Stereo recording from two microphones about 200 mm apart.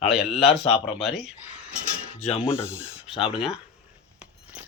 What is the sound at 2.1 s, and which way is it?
Speech, 30° left (ahead or behind).